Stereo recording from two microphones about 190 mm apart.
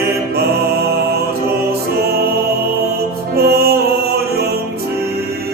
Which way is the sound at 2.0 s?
55° right (ahead or behind).